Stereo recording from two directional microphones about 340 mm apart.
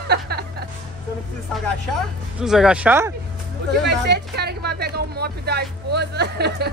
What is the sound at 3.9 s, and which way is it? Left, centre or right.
Speech, right.